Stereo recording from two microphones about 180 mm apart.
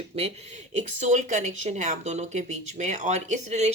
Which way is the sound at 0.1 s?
35° right (ahead or behind).